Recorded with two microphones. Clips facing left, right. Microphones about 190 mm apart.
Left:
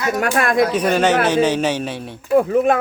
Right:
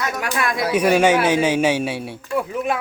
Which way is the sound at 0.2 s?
50° left (ahead or behind).